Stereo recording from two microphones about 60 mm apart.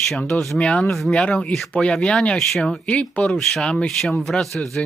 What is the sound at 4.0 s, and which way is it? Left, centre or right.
Speech, centre.